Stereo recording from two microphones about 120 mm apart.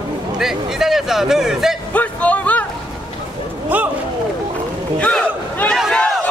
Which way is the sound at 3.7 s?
15° right (ahead or behind).